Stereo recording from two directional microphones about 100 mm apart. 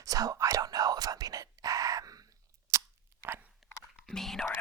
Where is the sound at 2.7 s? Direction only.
30° right (ahead or behind).